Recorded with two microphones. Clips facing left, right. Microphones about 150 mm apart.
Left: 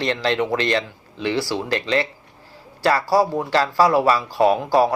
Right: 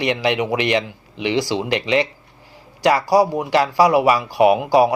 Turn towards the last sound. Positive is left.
turn(degrees=-15)  # may be behind; listen again after turning